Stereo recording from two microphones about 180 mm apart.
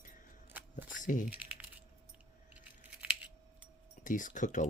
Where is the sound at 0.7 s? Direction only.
45° left (ahead or behind).